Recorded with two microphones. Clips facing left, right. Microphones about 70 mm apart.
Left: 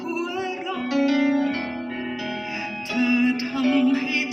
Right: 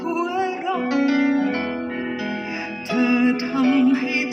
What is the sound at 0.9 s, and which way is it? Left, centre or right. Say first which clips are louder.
Music: even; centre.